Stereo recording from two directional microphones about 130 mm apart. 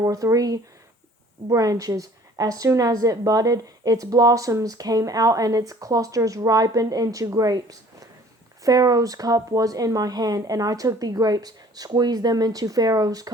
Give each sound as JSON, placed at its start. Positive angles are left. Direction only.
{"t": 0.0, "sound": "a woman's voice", "side_deg": -25}